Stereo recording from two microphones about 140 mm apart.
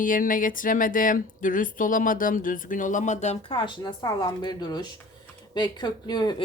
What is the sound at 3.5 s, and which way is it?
Speech, 30° left (ahead or behind).